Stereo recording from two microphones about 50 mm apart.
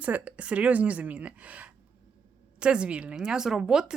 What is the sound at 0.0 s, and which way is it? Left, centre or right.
Speech, right.